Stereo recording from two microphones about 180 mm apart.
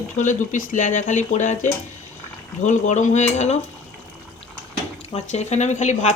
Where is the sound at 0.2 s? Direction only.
45° left (ahead or behind).